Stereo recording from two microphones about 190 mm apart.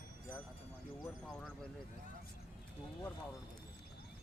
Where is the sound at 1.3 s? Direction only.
5° left (ahead or behind).